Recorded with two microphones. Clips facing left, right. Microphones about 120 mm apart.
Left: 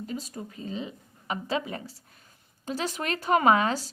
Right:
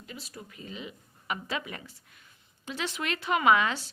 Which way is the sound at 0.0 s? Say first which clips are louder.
Left 9 dB; 40° left (ahead or behind).